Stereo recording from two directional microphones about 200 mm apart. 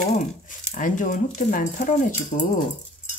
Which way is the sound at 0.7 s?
40° left (ahead or behind).